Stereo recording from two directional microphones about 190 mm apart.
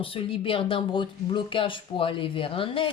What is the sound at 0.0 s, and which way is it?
Speech, 30° left (ahead or behind).